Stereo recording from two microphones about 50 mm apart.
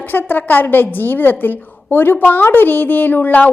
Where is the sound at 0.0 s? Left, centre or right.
Left.